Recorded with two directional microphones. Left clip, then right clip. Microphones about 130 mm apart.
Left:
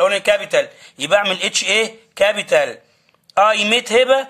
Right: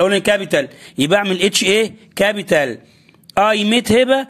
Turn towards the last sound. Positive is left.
turn(degrees=-45)  # may be behind; listen again after turning